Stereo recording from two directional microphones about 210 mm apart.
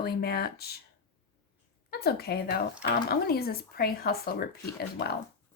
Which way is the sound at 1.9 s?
50° left (ahead or behind).